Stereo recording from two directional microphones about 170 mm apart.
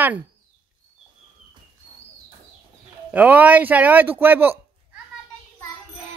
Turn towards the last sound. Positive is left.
turn(degrees=-10)  # may be behind; listen again after turning